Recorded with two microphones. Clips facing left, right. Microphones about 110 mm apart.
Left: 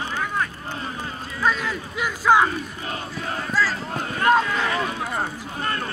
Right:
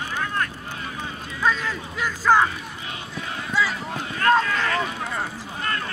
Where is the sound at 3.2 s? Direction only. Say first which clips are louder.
Left 4 dB; 45° left (ahead or behind).